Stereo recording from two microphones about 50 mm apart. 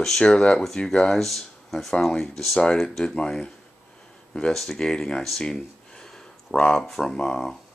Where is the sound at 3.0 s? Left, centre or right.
Centre.